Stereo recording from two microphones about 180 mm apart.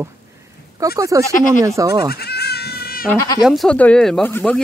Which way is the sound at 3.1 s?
15° left (ahead or behind).